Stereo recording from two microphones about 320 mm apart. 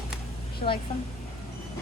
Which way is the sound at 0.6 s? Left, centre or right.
Left.